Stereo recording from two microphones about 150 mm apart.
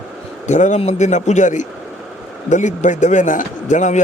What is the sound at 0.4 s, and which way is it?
A man's voice, 55° left (ahead or behind).